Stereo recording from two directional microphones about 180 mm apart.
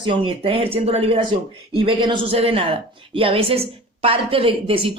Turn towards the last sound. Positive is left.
turn(degrees=-30)  # may be behind; listen again after turning